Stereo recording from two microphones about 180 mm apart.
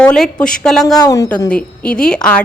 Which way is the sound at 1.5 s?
5° left (ahead or behind).